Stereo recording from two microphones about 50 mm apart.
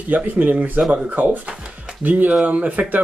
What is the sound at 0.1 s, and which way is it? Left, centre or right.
Speech, right.